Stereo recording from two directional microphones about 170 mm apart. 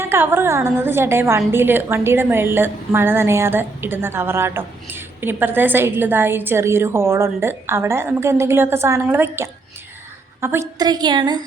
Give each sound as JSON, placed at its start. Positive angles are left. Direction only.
{"t": 0.0, "sound": "a woman's voice", "side_deg": -15}